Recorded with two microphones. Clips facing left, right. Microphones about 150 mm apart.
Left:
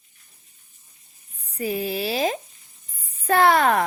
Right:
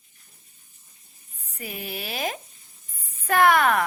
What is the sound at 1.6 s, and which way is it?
A woman's voice, 35° left (ahead or behind).